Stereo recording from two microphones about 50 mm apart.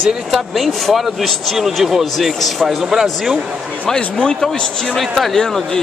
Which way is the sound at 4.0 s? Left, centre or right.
Centre.